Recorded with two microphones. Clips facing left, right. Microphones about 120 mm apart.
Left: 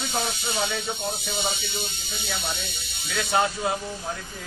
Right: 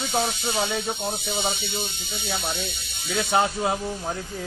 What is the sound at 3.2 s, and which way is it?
Speech, 25° right (ahead or behind).